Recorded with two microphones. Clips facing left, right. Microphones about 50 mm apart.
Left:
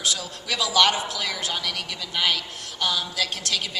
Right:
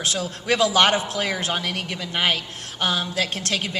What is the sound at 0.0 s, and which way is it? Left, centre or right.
A woman's voice, right.